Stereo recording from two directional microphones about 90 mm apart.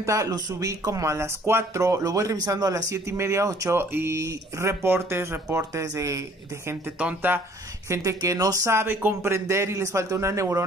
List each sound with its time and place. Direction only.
0.0 s speech: 35° right (ahead or behind)
7.0 s speech: 15° right (ahead or behind)
7.9 s speech: 35° right (ahead or behind)
8.7 s speech: 25° right (ahead or behind)